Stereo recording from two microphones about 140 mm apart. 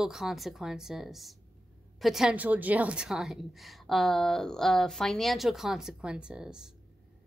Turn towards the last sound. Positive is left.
turn(degrees=-5)  # may be behind; listen again after turning